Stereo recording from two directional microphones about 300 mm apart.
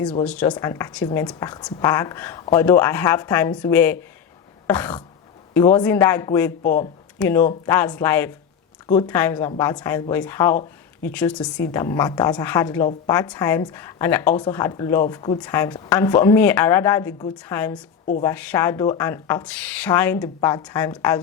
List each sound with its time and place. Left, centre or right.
0.3 s a woman's voice: centre
4.6 s a sound: centre
5.5 s speech: centre
6.6 s speech: left
7.2 s a woman's voice: centre